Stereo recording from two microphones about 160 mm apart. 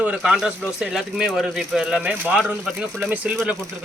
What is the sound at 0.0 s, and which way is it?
Speech, 5° right (ahead or behind).